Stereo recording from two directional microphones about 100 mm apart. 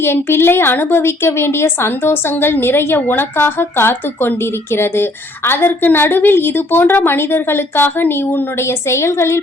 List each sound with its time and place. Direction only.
0.0 s a woman's voice: 25° left (ahead or behind)